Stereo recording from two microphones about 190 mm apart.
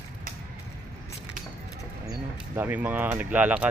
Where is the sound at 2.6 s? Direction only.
10° right (ahead or behind).